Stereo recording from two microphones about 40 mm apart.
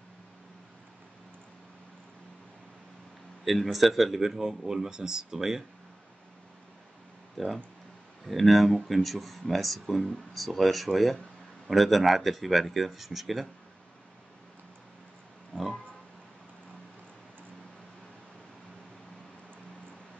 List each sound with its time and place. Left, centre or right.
3.4 s speech: centre
7.3 s speech: centre
15.5 s pig: centre